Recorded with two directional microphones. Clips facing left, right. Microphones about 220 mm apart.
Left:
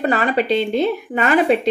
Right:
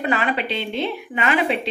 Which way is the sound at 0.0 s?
40° left (ahead or behind).